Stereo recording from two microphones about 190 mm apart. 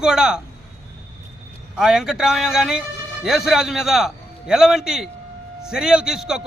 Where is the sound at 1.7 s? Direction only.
5° right (ahead or behind).